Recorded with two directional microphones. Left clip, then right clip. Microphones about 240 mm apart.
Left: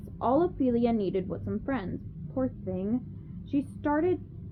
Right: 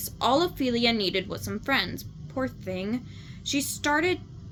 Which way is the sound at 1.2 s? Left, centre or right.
Right.